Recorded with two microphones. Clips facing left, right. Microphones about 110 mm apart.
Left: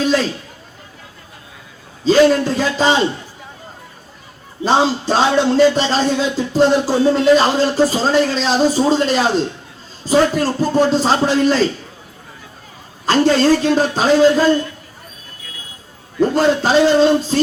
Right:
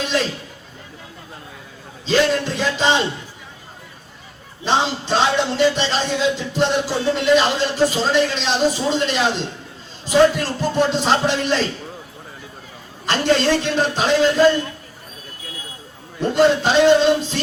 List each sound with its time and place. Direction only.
2.0 s speech: 40° left (ahead or behind)
4.6 s speech: 40° left (ahead or behind)
13.1 s speech: 40° left (ahead or behind)
16.3 s speech: 40° left (ahead or behind)